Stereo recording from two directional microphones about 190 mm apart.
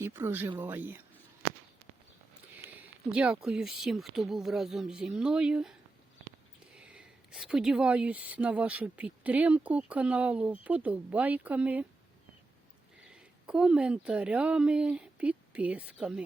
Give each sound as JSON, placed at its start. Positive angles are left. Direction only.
{"t": 0.0, "sound": "speech", "side_deg": -10}
{"t": 2.6, "sound": "speech", "side_deg": -5}
{"t": 6.7, "sound": "speech", "side_deg": -5}
{"t": 13.1, "sound": "speech", "side_deg": -5}